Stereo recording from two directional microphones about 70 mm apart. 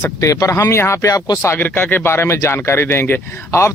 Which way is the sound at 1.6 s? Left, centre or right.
Left.